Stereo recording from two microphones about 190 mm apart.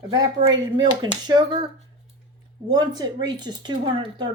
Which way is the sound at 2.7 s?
20° right (ahead or behind).